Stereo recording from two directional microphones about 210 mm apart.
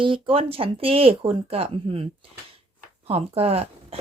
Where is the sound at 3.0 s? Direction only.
30° right (ahead or behind).